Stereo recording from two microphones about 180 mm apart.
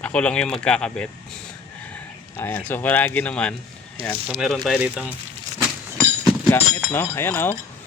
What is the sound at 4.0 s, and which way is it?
Speech, 30° right (ahead or behind).